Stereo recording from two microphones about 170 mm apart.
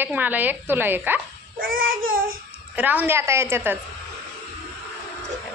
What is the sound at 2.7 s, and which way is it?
A woman's voice, 10° right (ahead or behind).